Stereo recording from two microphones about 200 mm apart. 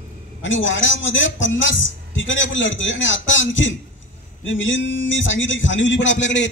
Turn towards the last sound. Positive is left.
turn(degrees=65)  # may be behind; listen again after turning